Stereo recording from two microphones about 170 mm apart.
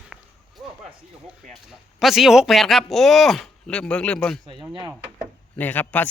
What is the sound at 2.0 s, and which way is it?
Speech, centre (ahead or behind).